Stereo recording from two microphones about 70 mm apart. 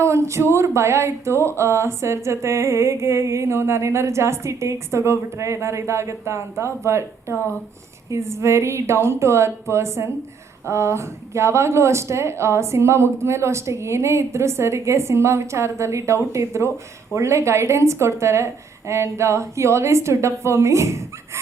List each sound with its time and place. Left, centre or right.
0.0 s a woman's voice: right